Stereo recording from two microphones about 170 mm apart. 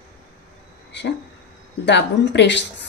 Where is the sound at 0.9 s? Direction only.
90° left.